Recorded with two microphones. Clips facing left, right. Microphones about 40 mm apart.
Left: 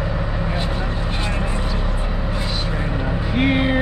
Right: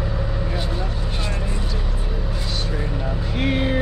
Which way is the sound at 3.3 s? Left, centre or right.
Centre.